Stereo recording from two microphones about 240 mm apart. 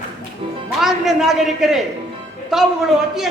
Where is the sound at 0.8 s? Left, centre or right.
Centre.